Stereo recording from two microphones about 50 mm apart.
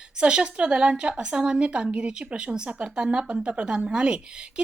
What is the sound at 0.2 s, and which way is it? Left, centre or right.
A woman's voice, centre.